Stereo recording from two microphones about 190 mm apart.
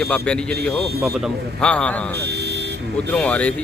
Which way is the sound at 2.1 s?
60° right (ahead or behind).